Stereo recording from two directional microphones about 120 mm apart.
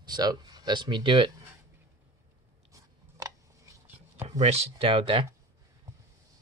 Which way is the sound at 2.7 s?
30° right (ahead or behind).